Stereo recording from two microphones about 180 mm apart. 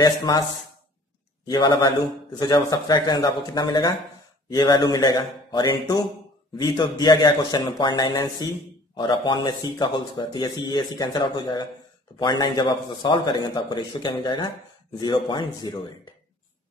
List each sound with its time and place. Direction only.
0.0 s a man's voice: 20° left (ahead or behind)
1.5 s a man's voice: 25° left (ahead or behind)